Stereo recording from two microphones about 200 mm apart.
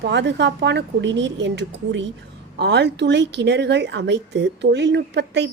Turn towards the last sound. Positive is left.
turn(degrees=-60)  # may be behind; listen again after turning